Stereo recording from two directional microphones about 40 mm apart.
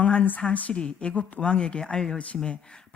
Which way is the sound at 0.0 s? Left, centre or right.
Left.